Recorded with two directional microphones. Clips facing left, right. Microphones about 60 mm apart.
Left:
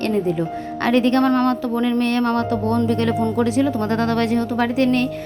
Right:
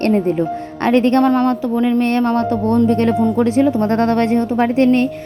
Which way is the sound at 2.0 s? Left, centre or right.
Right.